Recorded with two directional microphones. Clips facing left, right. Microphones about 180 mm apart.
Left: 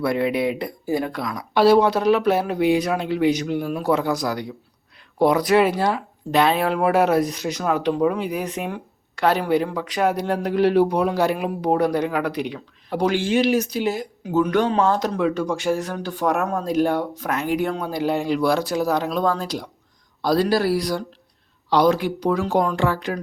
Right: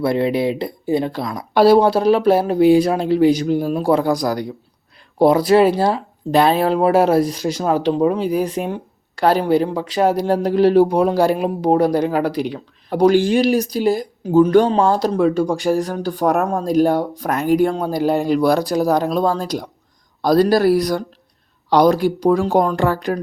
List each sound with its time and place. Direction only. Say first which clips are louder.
0.0 s speech: right 3 dB; 30° right (ahead or behind)